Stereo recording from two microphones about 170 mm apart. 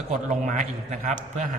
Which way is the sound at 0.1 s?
50° right (ahead or behind).